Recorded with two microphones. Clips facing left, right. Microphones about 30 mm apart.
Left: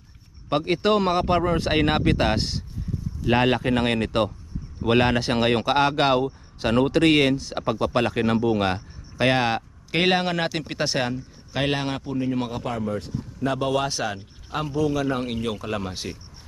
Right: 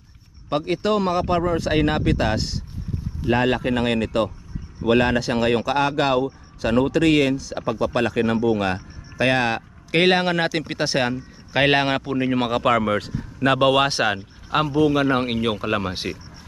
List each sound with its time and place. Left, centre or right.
0.5 s speech: centre; by 3.7 s left
4.9 s speech: left
6.9 s speech: left
7.9 s speech: centre
9.2 s speech: centre
11.0 s a sound: right
11.6 s speech: right